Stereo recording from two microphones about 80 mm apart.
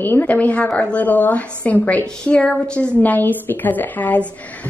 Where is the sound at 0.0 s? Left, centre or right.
Left.